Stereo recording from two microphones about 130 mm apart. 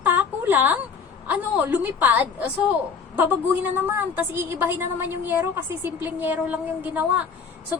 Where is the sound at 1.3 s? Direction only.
15° right (ahead or behind).